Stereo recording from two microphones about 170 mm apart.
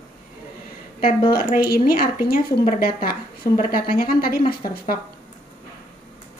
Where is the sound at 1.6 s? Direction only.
60° left (ahead or behind).